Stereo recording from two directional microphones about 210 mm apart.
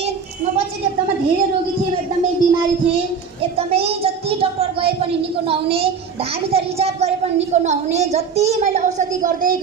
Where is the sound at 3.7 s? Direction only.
30° right (ahead or behind).